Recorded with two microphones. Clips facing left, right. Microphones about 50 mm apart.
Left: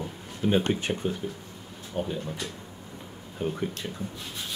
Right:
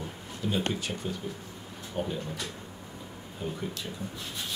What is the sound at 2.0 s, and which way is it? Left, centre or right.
Speech, centre.